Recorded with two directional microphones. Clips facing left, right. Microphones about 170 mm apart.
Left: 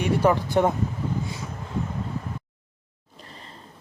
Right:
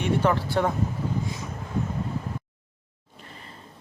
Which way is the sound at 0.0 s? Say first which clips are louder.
Left 2 dB; 10° left (ahead or behind).